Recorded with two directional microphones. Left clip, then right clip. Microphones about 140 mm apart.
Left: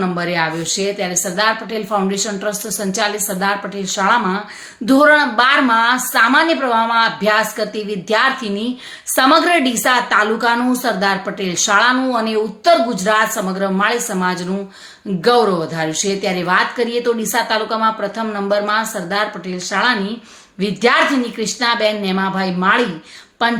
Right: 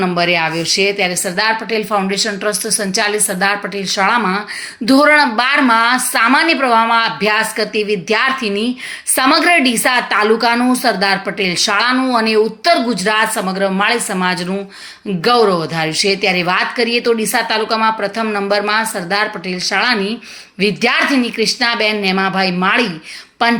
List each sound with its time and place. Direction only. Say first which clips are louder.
0.0 s a woman's voice: right 4 dB; 25° right (ahead or behind)